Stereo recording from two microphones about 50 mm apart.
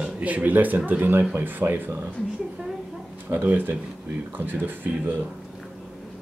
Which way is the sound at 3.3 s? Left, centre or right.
Right.